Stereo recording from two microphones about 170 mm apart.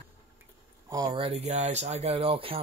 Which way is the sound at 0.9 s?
25° right (ahead or behind).